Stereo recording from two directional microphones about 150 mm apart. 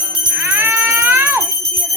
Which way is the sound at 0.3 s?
15° right (ahead or behind).